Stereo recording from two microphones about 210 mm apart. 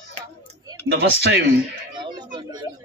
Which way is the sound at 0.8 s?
55° right (ahead or behind).